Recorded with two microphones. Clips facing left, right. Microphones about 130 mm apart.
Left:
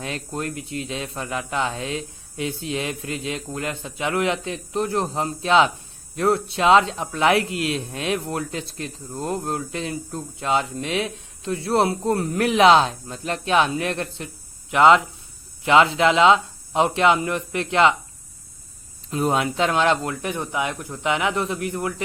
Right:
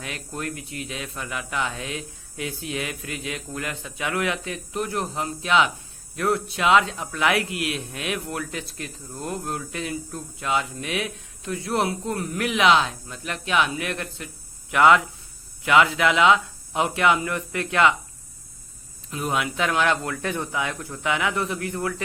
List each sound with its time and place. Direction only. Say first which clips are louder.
0.0 s speech: left 4 dB; 30° left (ahead or behind)
19.1 s speech: left 5 dB; 30° left (ahead or behind)